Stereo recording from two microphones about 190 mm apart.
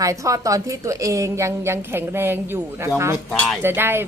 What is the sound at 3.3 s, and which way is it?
Speech, 5° left (ahead or behind).